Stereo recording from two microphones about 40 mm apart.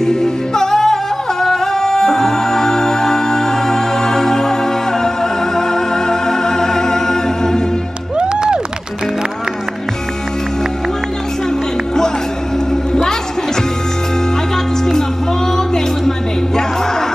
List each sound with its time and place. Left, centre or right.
0.0 s music: centre
8.2 s music: right